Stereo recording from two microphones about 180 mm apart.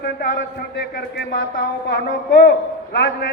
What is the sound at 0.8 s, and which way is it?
A man's voice, 60° left (ahead or behind).